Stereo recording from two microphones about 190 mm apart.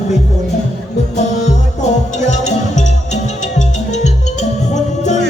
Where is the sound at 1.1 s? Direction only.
40° left (ahead or behind).